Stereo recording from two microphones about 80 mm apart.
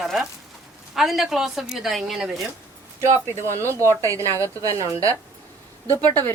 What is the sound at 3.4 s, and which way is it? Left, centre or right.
A woman's voice, right.